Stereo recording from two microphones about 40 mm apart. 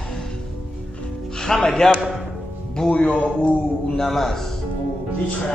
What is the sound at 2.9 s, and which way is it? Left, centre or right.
Speech, left.